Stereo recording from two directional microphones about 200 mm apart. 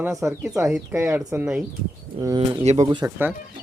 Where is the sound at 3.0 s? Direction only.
10° right (ahead or behind).